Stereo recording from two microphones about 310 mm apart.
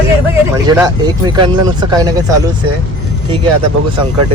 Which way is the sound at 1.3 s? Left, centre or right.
Centre.